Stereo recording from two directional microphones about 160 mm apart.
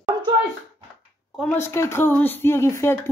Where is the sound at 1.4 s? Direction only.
15° left (ahead or behind).